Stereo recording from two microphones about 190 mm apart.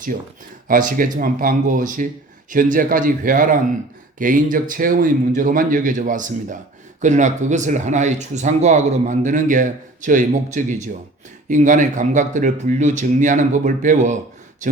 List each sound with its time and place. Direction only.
0.7 s a man's voice: 45° right (ahead or behind)